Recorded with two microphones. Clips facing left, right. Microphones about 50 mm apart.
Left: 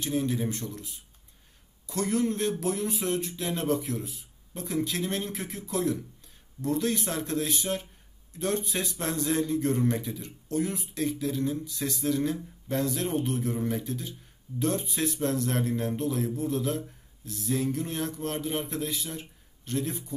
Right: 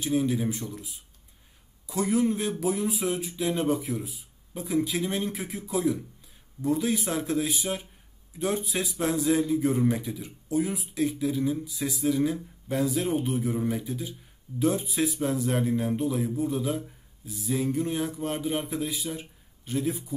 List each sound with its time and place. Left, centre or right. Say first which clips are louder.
0.0 s a man's voice: right 3 dB; centre